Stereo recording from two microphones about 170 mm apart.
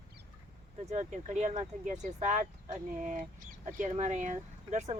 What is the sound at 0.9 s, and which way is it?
Speech, 45° right (ahead or behind).